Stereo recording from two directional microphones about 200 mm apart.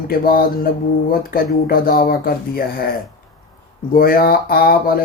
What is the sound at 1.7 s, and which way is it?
Speech, 45° left (ahead or behind).